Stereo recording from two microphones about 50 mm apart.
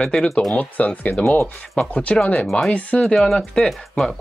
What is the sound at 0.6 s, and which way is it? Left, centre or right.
Speech, left.